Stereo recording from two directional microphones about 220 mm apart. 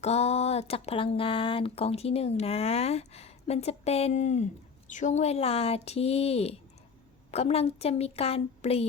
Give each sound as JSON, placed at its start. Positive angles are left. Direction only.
{"t": 0.0, "sound": "speech", "side_deg": 30}